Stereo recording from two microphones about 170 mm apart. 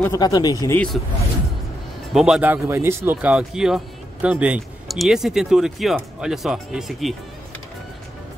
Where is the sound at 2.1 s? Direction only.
5° right (ahead or behind).